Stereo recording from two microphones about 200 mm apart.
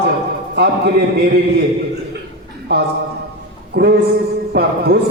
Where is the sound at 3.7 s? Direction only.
55° right (ahead or behind).